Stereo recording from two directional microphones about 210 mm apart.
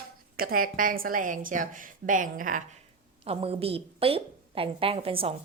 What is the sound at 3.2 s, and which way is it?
A woman's voice, 25° right (ahead or behind).